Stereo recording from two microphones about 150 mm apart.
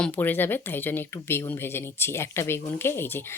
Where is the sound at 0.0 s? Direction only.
10° left (ahead or behind).